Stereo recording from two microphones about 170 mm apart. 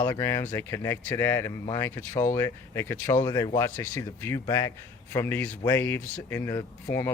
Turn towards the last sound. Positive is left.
turn(degrees=15)  # may be behind; listen again after turning